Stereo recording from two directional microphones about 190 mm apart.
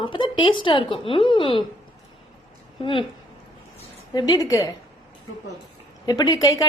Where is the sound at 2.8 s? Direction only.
30° left (ahead or behind).